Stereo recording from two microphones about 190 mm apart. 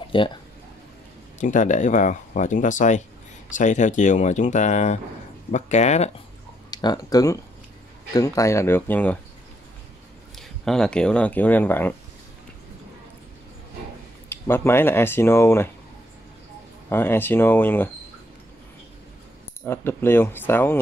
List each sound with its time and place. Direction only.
0.1 s speech: 25° left (ahead or behind)
1.4 s speech: 40° left (ahead or behind)
6.7 s speech: 20° left (ahead or behind)
10.3 s speech: centre (ahead or behind)
14.3 s speech: 15° left (ahead or behind)
16.9 s speech: 10° left (ahead or behind)
19.6 s speech: 10° left (ahead or behind)